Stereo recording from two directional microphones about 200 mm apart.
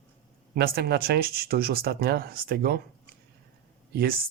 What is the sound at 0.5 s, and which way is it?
Speech, 50° right (ahead or behind).